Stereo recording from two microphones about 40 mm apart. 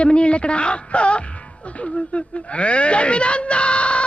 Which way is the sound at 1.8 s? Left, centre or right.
Left.